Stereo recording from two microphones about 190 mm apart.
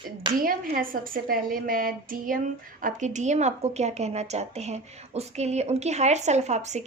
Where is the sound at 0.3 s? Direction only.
50° right (ahead or behind).